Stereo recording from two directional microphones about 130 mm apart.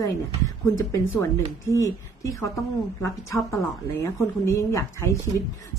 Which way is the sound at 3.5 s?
20° left (ahead or behind).